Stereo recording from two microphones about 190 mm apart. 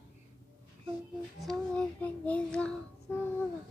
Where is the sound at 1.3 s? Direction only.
5° left (ahead or behind).